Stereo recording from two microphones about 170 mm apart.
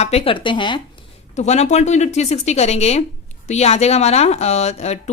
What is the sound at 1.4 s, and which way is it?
Speech, 40° left (ahead or behind).